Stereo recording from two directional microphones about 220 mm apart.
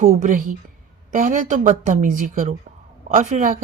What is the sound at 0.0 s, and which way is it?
Speech, 35° right (ahead or behind).